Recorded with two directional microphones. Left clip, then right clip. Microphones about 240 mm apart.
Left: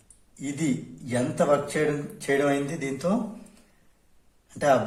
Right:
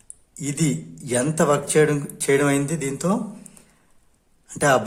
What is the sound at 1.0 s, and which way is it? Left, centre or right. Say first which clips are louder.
Speech: right 3 dB; right.